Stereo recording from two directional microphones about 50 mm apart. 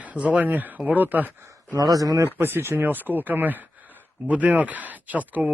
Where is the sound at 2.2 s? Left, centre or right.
Right.